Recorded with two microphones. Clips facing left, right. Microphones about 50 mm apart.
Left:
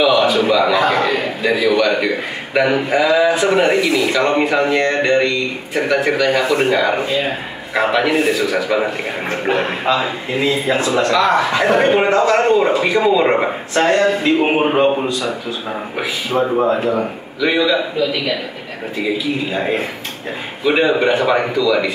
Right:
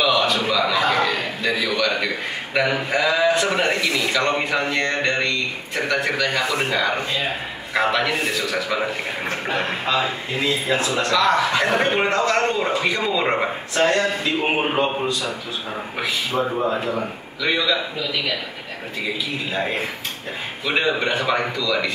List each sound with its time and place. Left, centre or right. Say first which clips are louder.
0.0 s a man's voice: left 6 dB; centre
16.3 s speech: left 6 dB; left
17.4 s a man's voice: left 5 dB; centre
18.9 s a man's voice: left 7 dB; centre